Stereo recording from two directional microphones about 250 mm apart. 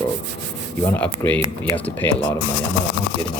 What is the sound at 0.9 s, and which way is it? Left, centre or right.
Speech, centre.